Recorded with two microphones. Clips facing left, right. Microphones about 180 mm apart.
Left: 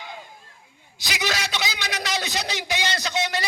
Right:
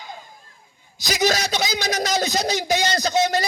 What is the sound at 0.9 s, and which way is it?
A man's voice, 40° right (ahead or behind).